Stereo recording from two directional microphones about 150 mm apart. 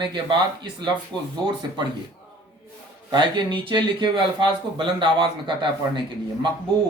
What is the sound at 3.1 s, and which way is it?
Speech, 30° right (ahead or behind).